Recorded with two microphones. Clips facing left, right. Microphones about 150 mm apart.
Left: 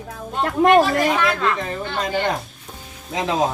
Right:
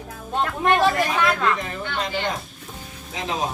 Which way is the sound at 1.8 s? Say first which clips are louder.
Left 3 dB; 40° left (ahead or behind).